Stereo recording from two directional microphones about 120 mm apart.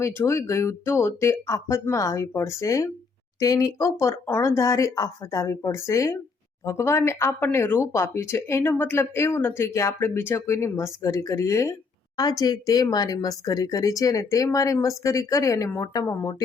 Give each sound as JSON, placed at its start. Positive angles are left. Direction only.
{"t": 0.0, "sound": "speech", "side_deg": 25}